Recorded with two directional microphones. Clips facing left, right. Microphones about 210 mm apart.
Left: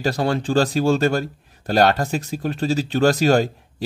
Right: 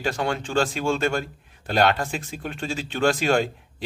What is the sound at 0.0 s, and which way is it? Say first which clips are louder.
A man's voice: left 5 dB; 35° left (ahead or behind).